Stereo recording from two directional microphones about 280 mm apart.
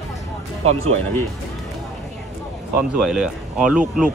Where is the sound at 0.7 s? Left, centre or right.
Right.